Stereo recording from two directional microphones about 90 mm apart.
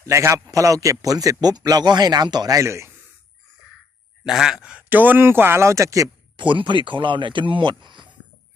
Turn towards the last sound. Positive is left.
turn(degrees=-60)  # may be behind; listen again after turning